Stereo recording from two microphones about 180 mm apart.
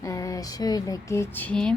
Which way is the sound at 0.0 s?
20° left (ahead or behind).